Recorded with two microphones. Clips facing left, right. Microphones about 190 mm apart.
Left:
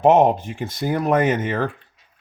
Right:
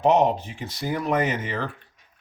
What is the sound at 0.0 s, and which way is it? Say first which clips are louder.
Speech: left 5 dB; 50° left (ahead or behind).